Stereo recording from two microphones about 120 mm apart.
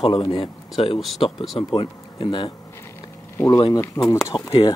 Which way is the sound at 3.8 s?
30° left (ahead or behind).